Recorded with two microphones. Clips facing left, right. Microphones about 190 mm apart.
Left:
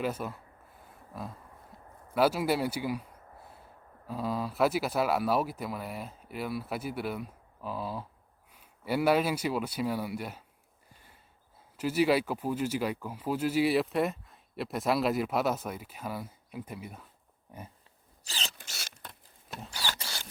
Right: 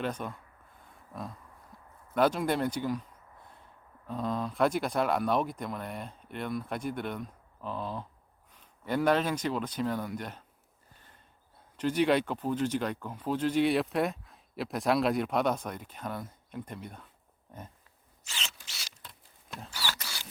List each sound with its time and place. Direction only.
0.0 s speech: 5° left (ahead or behind)
2.1 s speech: 5° left (ahead or behind)
11.8 s speech: 5° left (ahead or behind)
17.5 s pig: 10° left (ahead or behind)
18.3 s zipper: 35° left (ahead or behind)
18.5 s zipper: 50° left (ahead or behind)
19.8 s a sound: 20° left (ahead or behind)